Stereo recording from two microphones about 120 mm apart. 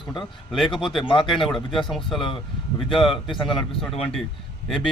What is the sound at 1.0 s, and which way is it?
Speech, 40° left (ahead or behind).